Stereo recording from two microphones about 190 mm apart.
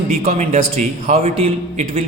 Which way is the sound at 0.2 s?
35° right (ahead or behind).